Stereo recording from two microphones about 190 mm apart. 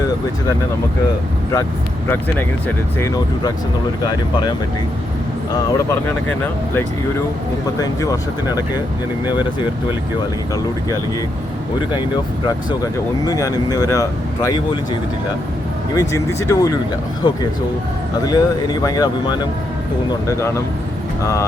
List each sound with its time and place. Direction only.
4.0 s speech: 20° left (ahead or behind)
5.5 s speech: 15° left (ahead or behind)
7.8 s speech: 15° left (ahead or behind)
11.9 s speech: 25° left (ahead or behind)
16.0 s speech: 15° left (ahead or behind)